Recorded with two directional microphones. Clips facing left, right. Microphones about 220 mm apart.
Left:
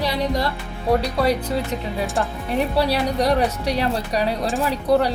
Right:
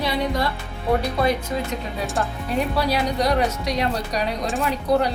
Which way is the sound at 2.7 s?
30° left (ahead or behind).